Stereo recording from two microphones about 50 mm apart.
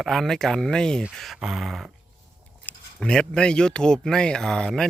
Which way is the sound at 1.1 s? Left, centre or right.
Centre.